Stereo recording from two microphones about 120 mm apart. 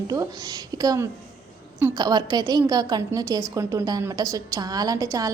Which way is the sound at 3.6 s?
20° right (ahead or behind).